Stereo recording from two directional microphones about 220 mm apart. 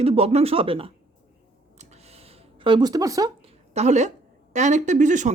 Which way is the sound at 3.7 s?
30° right (ahead or behind).